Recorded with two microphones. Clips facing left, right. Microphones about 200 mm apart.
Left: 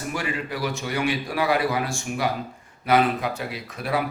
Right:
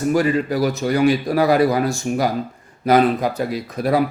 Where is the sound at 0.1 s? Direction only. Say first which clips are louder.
Right 11 dB; 40° right (ahead or behind).